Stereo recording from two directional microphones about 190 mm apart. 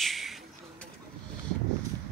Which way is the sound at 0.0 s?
Centre (ahead or behind).